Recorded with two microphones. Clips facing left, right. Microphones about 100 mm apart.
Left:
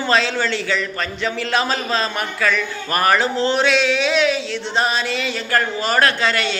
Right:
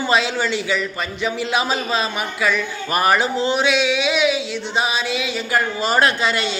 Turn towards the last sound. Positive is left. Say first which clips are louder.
# left 1 dB
turn(degrees=-15)  # may be behind; listen again after turning